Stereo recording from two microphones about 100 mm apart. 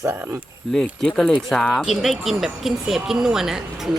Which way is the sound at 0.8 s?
5° left (ahead or behind).